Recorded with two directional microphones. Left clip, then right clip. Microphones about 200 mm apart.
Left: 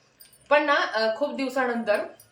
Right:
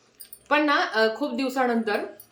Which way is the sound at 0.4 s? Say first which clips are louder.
Left 1 dB; 20° right (ahead or behind).